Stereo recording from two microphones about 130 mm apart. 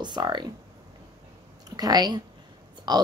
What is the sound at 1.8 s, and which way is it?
Speech, 30° right (ahead or behind).